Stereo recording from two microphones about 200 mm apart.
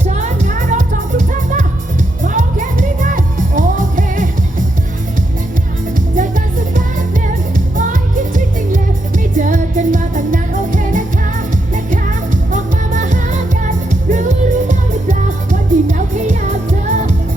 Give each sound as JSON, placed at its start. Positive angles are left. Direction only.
{"t": 0.0, "sound": "music", "side_deg": -35}
{"t": 5.9, "sound": "music", "side_deg": -40}